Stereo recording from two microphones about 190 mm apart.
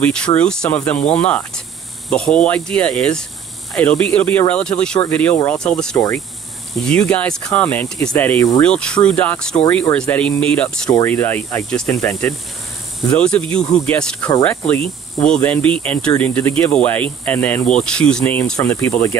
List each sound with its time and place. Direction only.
0.0 s speech: 5° left (ahead or behind)
5.9 s speech: 15° left (ahead or behind)
6.7 s speech: 5° left (ahead or behind)